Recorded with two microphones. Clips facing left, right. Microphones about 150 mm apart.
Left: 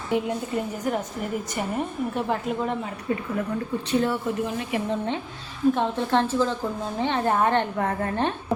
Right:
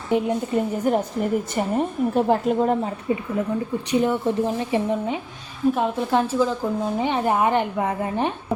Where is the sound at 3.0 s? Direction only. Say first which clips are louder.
Right 1 dB; 15° right (ahead or behind).